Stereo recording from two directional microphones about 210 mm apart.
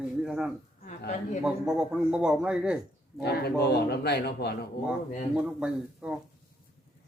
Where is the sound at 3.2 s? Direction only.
50° left (ahead or behind).